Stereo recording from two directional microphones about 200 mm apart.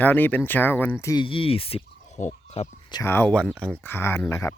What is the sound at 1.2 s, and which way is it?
Speech, 25° left (ahead or behind).